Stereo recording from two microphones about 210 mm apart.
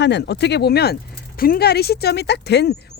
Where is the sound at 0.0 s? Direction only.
55° left (ahead or behind).